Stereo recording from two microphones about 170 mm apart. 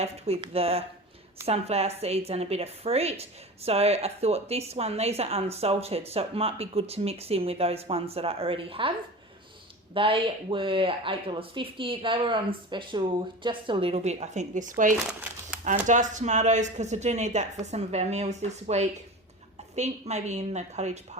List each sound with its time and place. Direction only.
0.0 s speech: 35° right (ahead or behind)
9.9 s speech: 30° right (ahead or behind)